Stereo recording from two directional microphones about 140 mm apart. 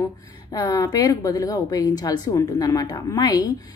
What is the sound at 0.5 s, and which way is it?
A woman's voice, 25° left (ahead or behind).